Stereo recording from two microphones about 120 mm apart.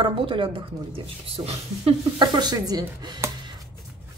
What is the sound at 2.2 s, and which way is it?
A woman's voice, 35° right (ahead or behind).